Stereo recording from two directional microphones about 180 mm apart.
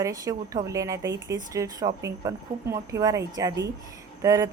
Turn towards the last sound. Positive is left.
turn(degrees=-15)  # may be behind; listen again after turning